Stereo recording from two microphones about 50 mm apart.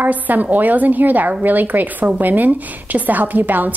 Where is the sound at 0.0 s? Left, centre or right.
Right.